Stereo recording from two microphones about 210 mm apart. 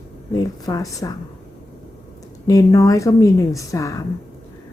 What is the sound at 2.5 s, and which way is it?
A woman's voice, 15° left (ahead or behind).